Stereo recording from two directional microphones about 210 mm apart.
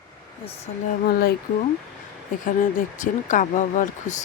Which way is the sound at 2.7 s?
35° left (ahead or behind).